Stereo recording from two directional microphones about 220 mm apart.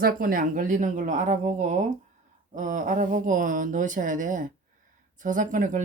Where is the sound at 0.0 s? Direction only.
40° right (ahead or behind).